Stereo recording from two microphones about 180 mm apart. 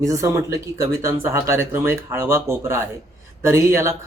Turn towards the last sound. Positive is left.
turn(degrees=-15)  # may be behind; listen again after turning